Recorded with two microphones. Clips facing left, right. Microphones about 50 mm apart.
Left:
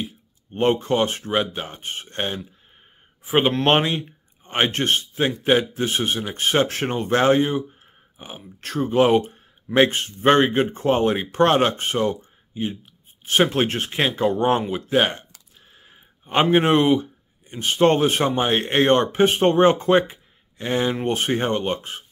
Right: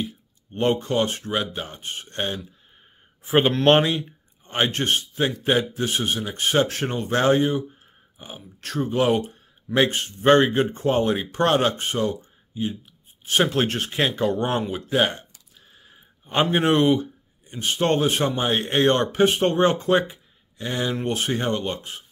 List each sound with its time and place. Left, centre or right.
0.6 s speech: left
3.3 s speech: centre
4.5 s a man's voice: left
15.7 s a sound: left
16.4 s speech: left